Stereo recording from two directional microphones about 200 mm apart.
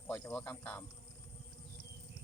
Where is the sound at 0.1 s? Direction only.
5° left (ahead or behind).